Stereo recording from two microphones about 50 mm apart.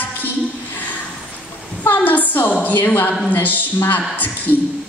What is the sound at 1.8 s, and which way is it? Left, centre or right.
A woman's voice, left.